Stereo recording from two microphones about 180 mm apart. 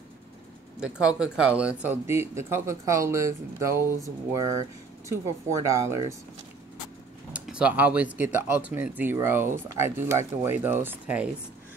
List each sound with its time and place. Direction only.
0.7 s speech: 5° right (ahead or behind)
7.3 s speech: 5° right (ahead or behind)